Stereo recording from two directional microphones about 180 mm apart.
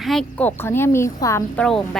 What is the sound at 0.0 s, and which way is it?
A woman's voice, centre (ahead or behind).